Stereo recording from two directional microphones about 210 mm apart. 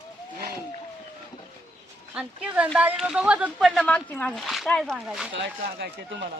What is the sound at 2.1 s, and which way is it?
Speech, 5° right (ahead or behind).